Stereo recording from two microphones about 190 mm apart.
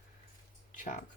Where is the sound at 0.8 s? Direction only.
40° left (ahead or behind).